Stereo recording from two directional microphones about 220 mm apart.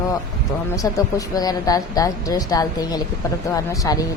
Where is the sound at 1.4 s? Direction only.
15° left (ahead or behind).